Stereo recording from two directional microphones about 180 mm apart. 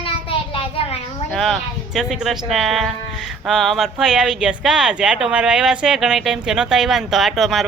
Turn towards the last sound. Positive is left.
turn(degrees=0)  # may be behind; listen again after turning